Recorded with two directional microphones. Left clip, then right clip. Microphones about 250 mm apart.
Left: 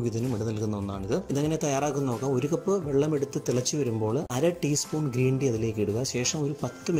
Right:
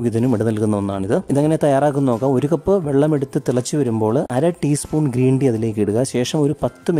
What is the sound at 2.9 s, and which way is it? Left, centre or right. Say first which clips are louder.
Speech: right 9 dB; right.